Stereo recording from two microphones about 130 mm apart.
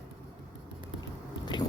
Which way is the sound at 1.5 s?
35° left (ahead or behind).